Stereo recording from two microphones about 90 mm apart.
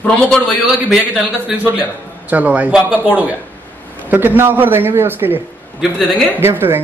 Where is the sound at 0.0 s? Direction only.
15° left (ahead or behind).